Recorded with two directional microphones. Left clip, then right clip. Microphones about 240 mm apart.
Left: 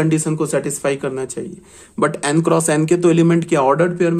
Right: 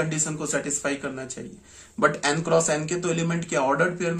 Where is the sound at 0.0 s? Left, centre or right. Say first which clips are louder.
Left 9 dB; left.